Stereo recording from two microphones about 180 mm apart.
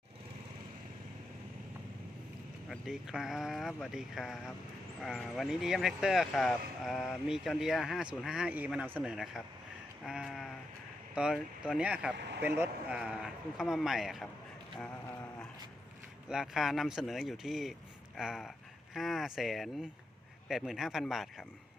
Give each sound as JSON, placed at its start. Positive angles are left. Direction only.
{"t": 2.6, "sound": "speech", "side_deg": 0}
{"t": 10.1, "sound": "sheep", "side_deg": 0}
{"t": 11.1, "sound": "speech", "side_deg": -5}
{"t": 12.1, "sound": "speech", "side_deg": -75}
{"t": 12.4, "sound": "speech", "side_deg": -10}
{"t": 14.8, "sound": "a sound", "side_deg": 10}
{"t": 16.3, "sound": "speech", "side_deg": 0}